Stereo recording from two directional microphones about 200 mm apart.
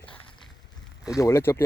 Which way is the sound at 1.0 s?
15° left (ahead or behind).